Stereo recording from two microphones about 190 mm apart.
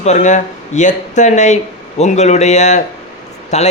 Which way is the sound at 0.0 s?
40° left (ahead or behind).